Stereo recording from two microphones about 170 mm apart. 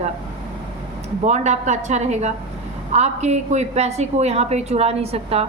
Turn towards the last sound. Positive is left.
turn(degrees=-35)  # may be behind; listen again after turning